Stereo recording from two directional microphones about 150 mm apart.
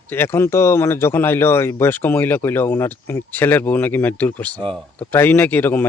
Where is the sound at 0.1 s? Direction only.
15° left (ahead or behind).